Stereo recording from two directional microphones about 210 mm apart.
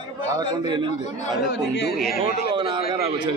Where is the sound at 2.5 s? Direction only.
25° right (ahead or behind).